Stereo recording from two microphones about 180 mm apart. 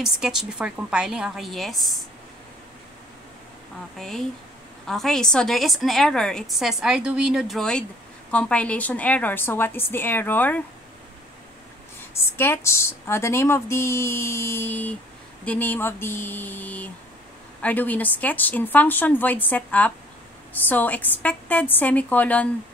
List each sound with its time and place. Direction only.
0.0 s a woman's voice: centre (ahead or behind)
4.0 s a woman's voice: 5° left (ahead or behind)
12.4 s speech: 15° left (ahead or behind)